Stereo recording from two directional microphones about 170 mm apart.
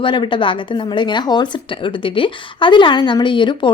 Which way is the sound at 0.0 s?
30° left (ahead or behind).